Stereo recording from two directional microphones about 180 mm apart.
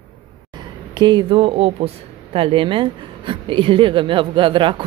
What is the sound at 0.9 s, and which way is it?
Speech, 25° right (ahead or behind).